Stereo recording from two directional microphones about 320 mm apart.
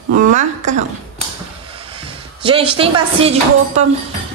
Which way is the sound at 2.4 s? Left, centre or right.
Centre.